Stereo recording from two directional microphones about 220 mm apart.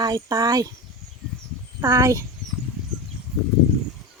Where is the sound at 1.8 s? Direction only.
15° right (ahead or behind).